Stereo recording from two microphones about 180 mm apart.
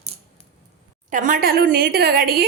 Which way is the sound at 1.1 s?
45° right (ahead or behind).